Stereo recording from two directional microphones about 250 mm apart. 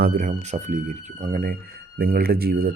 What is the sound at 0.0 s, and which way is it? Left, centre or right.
Speech, right.